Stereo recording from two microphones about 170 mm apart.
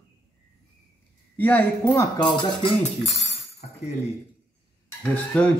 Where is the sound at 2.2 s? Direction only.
30° left (ahead or behind).